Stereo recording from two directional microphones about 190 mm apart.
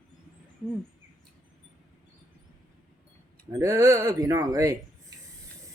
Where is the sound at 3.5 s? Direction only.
15° right (ahead or behind).